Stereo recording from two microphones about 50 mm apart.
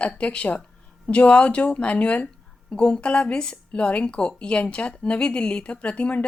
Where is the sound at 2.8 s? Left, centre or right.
Centre.